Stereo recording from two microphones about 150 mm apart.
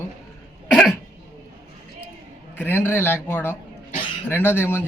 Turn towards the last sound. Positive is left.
turn(degrees=15)  # may be behind; listen again after turning